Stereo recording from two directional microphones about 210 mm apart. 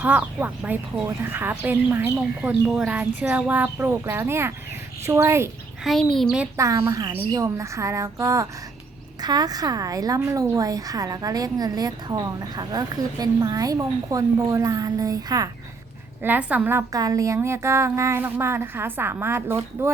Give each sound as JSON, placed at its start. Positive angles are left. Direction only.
{"t": 0.0, "sound": "a woman's voice", "side_deg": -5}
{"t": 5.8, "sound": "a child's voice", "side_deg": 0}
{"t": 6.3, "sound": "a woman's voice", "side_deg": -10}